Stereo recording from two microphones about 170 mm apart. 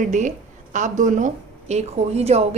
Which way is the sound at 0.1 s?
45° right (ahead or behind).